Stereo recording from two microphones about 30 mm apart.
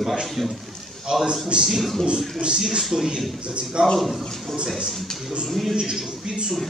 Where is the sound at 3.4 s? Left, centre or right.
Right.